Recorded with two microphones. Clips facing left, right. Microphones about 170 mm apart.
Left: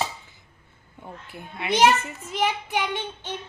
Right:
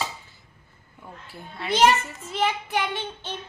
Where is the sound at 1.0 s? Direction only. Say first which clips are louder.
Left 2 dB; 20° left (ahead or behind).